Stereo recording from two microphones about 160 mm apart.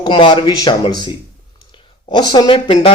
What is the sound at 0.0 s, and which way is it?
A man's voice, 30° left (ahead or behind).